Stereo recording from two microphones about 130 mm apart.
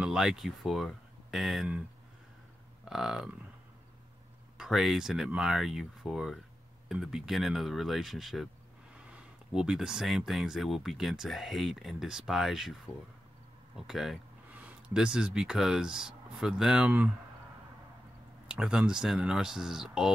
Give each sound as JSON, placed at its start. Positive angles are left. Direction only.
{"t": 0.0, "sound": "speech", "side_deg": -5}
{"t": 4.6, "sound": "speech", "side_deg": 0}
{"t": 18.5, "sound": "speech", "side_deg": -5}